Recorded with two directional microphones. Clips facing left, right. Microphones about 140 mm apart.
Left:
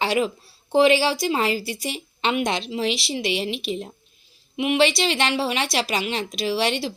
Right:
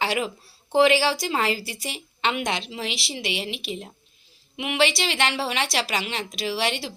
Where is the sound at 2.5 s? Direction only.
15° right (ahead or behind).